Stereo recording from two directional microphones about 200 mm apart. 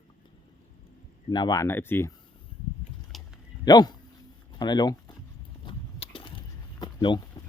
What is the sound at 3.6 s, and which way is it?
Speech, 20° left (ahead or behind).